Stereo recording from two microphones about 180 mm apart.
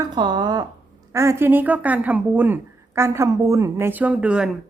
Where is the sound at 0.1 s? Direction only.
25° right (ahead or behind); by 4.4 s 5° right (ahead or behind).